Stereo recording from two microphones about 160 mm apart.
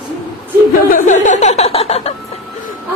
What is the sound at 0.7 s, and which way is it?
A woman's voice, 55° left (ahead or behind).